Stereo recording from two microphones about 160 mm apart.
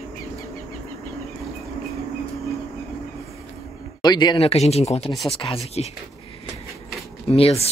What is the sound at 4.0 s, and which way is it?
Speech, 25° left (ahead or behind).